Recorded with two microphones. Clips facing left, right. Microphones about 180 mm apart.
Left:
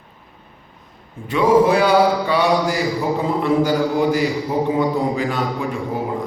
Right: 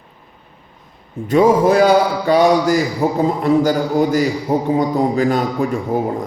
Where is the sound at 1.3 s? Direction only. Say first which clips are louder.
Right 2 dB; 45° right (ahead or behind).